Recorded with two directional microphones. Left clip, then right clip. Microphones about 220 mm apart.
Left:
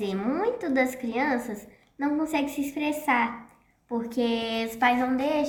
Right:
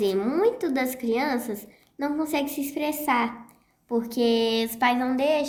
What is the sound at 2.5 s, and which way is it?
Speech, 40° right (ahead or behind).